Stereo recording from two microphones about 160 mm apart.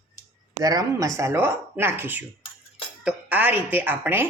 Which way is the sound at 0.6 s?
20° right (ahead or behind).